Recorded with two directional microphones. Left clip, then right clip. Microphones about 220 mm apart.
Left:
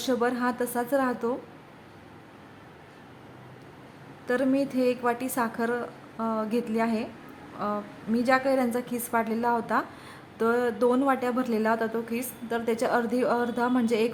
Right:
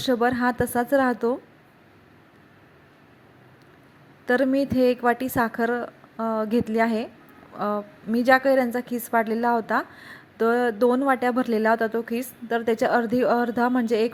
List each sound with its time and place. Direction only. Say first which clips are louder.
0.0 s a woman's voice: right 4 dB; 20° right (ahead or behind)
4.3 s a woman's voice: right 4 dB; 25° right (ahead or behind)